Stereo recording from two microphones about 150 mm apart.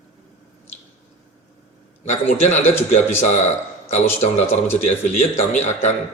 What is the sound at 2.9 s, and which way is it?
Speech, 50° left (ahead or behind).